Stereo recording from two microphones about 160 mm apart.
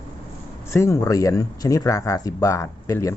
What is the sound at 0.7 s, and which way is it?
Speech, 20° left (ahead or behind).